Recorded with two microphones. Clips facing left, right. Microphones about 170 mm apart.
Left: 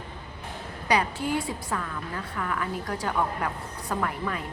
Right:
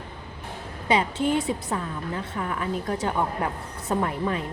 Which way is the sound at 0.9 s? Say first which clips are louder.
Right 3 dB; 25° right (ahead or behind).